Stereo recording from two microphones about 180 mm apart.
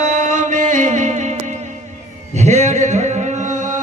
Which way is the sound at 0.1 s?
45° right (ahead or behind).